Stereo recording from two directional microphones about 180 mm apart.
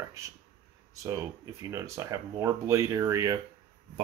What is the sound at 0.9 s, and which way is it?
Speech, 20° right (ahead or behind).